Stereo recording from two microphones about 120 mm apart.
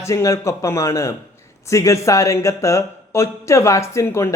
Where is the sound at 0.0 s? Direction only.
25° left (ahead or behind).